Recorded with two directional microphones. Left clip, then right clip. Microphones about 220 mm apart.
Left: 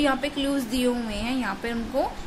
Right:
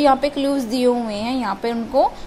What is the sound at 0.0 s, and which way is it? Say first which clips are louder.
A woman's voice: right 8 dB; 15° right (ahead or behind).